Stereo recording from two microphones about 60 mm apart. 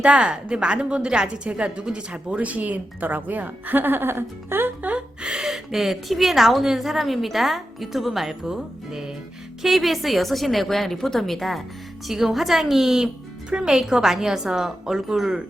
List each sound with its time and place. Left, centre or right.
0.0 s a woman's voice: centre
5.2 s a woman's voice: centre